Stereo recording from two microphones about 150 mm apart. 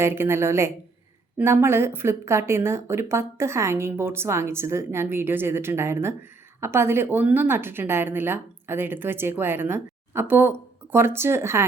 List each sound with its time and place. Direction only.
0.0 s speech: 15° right (ahead or behind)